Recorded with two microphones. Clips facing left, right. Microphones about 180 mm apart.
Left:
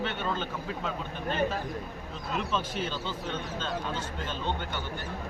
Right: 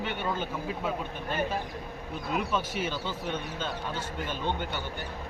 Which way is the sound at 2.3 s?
10° right (ahead or behind).